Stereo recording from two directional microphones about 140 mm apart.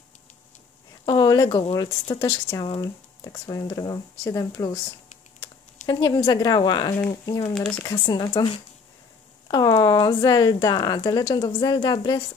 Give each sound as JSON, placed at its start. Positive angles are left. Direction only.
{"t": 1.0, "sound": "a sound", "side_deg": 30}
{"t": 1.5, "sound": "speech", "side_deg": 45}
{"t": 2.1, "sound": "speech", "side_deg": 30}
{"t": 5.9, "sound": "speech", "side_deg": 30}
{"t": 7.5, "sound": "speech", "side_deg": 0}
{"t": 7.8, "sound": "speech", "side_deg": 30}